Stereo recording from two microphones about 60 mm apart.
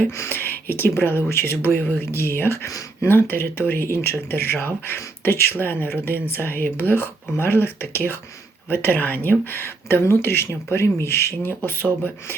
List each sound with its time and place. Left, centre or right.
0.1 s speech: left
0.3 s speech: left
2.6 s speech: left
3.1 s speech: left